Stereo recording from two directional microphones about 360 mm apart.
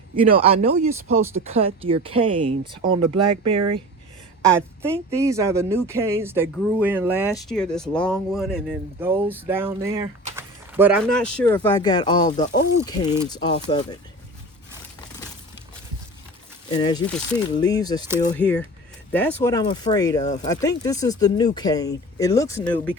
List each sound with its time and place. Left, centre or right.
0.2 s speech: centre
16.7 s speech: centre